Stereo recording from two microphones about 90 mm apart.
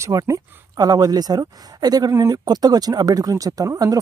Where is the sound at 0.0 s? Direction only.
40° right (ahead or behind).